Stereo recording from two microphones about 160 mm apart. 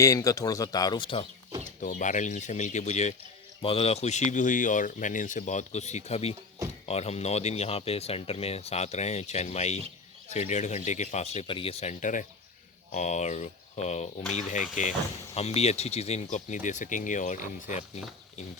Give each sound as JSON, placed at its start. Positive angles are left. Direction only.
{"t": 0.0, "sound": "speech", "side_deg": 20}
{"t": 1.8, "sound": "speech", "side_deg": 50}
{"t": 15.4, "sound": "speech", "side_deg": 40}